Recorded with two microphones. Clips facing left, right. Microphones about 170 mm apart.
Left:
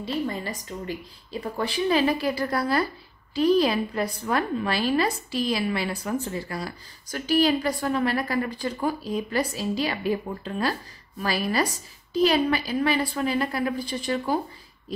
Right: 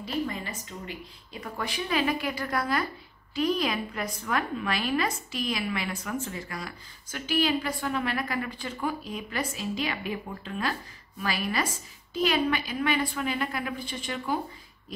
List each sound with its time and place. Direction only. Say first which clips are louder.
0.0 s a woman's voice: left 3 dB; 35° left (ahead or behind)